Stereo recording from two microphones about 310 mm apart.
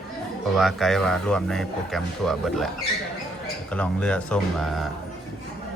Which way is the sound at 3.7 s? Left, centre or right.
Centre.